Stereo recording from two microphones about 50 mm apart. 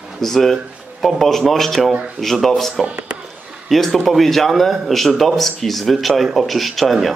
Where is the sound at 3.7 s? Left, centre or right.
Centre.